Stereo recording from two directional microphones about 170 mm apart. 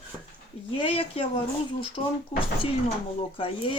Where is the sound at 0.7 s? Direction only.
30° left (ahead or behind).